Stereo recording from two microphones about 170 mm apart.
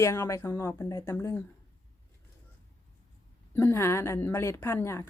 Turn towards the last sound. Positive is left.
turn(degrees=15)  # may be behind; listen again after turning